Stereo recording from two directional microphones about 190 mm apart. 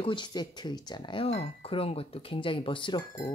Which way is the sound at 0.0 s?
25° left (ahead or behind).